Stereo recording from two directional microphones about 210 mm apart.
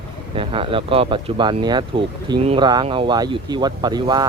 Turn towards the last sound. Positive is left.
turn(degrees=-20)  # may be behind; listen again after turning